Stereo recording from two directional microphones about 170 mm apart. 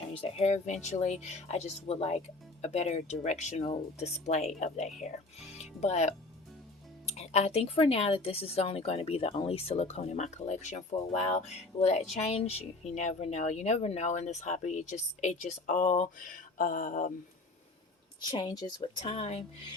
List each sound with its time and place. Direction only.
0.1 s speech: 35° left (ahead or behind)
18.2 s speech: 25° left (ahead or behind)
18.8 s speech: 35° left (ahead or behind)